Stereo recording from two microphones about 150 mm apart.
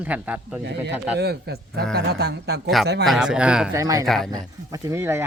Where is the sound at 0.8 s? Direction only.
90° right.